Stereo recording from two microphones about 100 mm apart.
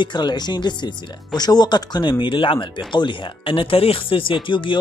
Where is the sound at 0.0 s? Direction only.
50° left (ahead or behind).